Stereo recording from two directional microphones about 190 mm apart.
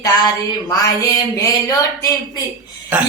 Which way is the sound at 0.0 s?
20° left (ahead or behind).